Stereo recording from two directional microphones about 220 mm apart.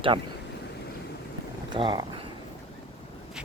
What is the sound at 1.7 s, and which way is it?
Speech, 20° right (ahead or behind).